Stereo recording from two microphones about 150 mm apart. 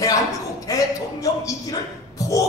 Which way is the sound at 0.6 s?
20° left (ahead or behind).